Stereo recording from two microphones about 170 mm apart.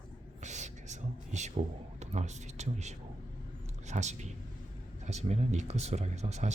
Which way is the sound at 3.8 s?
45° right (ahead or behind).